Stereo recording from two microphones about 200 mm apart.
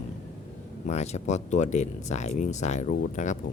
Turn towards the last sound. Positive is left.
turn(degrees=40)  # may be behind; listen again after turning